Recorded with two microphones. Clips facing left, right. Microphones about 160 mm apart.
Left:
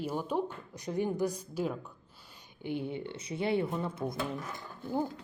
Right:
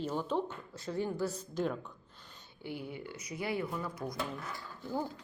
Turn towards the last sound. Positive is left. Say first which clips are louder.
# left 3 dB
turn(degrees=20)  # may be behind; listen again after turning